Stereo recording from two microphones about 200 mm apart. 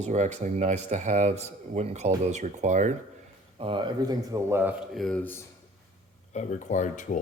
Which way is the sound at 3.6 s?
25° right (ahead or behind).